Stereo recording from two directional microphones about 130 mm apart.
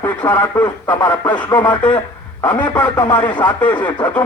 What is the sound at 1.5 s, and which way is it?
Speech, 35° left (ahead or behind).